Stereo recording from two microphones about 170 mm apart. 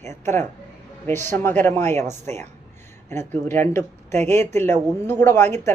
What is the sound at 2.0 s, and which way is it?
Speech, 40° right (ahead or behind).